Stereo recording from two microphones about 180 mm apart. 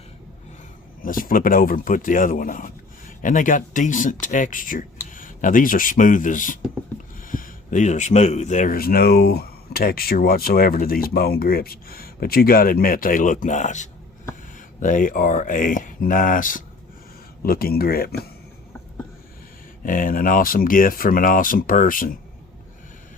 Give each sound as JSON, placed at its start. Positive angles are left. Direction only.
{"t": 1.0, "sound": "speech", "side_deg": 50}
{"t": 19.8, "sound": "speech", "side_deg": 50}